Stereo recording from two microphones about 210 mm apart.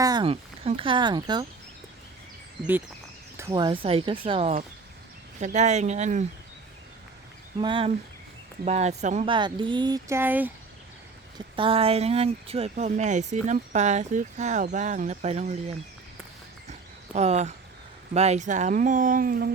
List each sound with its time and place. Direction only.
0.0 s speech: 20° right (ahead or behind)
3.3 s speech: 15° right (ahead or behind); by 6.2 s 35° right (ahead or behind)
7.6 s speech: 25° right (ahead or behind); by 10.5 s 10° right (ahead or behind)
11.3 s speech: 25° right (ahead or behind)
17.2 s speech: 30° right (ahead or behind)